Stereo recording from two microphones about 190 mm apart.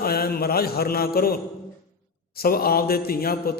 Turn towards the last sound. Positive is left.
turn(degrees=55)  # may be behind; listen again after turning